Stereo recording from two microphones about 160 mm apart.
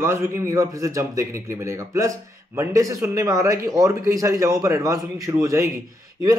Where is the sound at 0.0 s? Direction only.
15° right (ahead or behind).